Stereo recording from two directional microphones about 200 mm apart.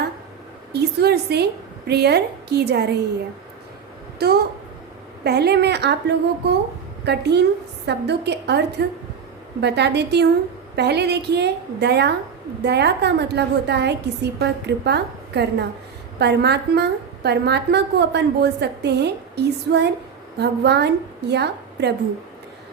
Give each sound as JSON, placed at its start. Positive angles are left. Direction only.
{"t": 0.7, "sound": "a woman's voice", "side_deg": -55}
{"t": 4.2, "sound": "a woman's voice", "side_deg": -50}